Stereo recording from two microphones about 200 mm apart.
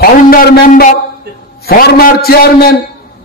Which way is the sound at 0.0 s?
45° left (ahead or behind).